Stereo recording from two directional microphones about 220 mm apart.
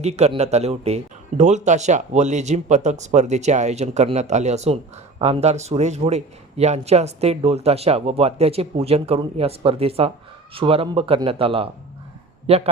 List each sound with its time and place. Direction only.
0.0 s a man's voice: 30° right (ahead or behind)